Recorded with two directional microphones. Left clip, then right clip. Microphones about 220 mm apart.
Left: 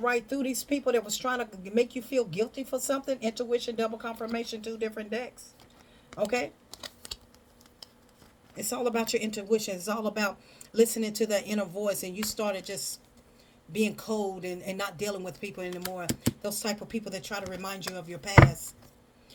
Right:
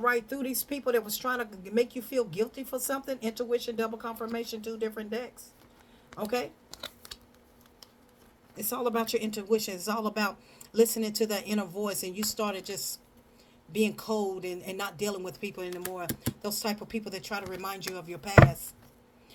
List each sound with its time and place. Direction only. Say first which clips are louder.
0.0 s speech: even; 15° right (ahead or behind)
8.5 s speech: even; 15° right (ahead or behind)
14.4 s speech: left 1 dB; 25° right (ahead or behind)